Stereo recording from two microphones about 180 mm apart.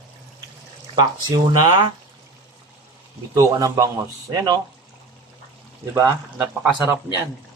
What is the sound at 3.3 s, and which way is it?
Speech, 20° right (ahead or behind).